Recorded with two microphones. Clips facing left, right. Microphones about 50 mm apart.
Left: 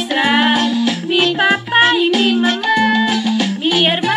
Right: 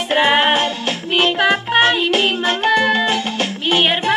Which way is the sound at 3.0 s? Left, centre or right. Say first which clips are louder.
Left 3 dB; right.